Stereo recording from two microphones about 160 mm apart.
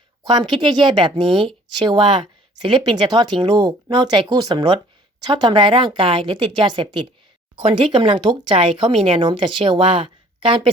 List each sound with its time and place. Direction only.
0.6 s speech: 30° right (ahead or behind)